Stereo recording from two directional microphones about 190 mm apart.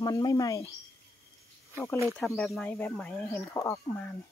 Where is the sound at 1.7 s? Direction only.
15° left (ahead or behind).